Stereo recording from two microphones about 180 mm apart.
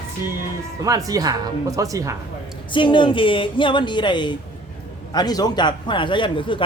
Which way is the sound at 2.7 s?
25° left (ahead or behind).